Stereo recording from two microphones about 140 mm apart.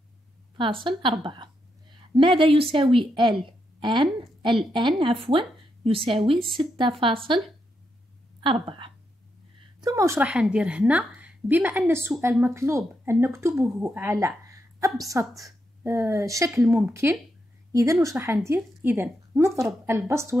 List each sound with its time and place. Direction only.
0.6 s a woman's voice: 35° right (ahead or behind)
9.8 s speech: 25° right (ahead or behind)
10.2 s a woman's voice: 5° right (ahead or behind)